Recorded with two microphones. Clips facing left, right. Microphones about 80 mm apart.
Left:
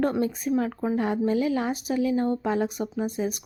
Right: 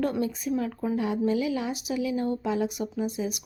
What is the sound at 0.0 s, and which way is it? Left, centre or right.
A woman's voice, left.